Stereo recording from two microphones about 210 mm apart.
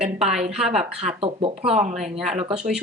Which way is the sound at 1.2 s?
25° right (ahead or behind).